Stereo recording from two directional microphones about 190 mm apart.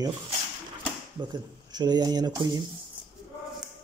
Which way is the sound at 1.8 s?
20° right (ahead or behind).